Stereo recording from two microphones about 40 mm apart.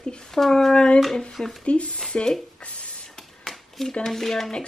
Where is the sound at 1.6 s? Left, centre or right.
Left.